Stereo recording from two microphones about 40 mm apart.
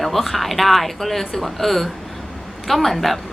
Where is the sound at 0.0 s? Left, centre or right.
Centre.